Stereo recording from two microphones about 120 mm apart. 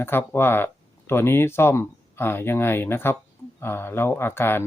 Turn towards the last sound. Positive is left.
turn(degrees=20)  # may be behind; listen again after turning